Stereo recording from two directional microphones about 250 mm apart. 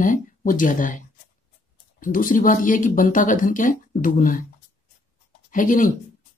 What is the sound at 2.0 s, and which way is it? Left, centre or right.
Speech, left.